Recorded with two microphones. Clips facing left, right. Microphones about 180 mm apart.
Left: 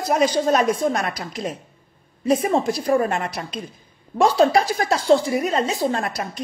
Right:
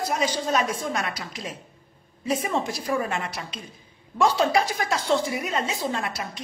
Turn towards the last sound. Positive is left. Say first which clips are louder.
# left 6 dB
turn(degrees=40)  # may be behind; listen again after turning